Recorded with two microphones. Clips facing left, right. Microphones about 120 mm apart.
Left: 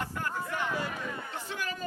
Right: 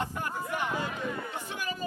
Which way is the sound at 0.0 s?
20° right (ahead or behind).